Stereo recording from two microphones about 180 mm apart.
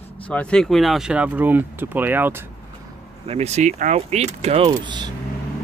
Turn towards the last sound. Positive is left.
turn(degrees=-25)  # may be behind; listen again after turning